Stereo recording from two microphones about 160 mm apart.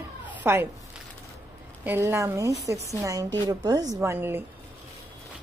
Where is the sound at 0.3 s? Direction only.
10° right (ahead or behind).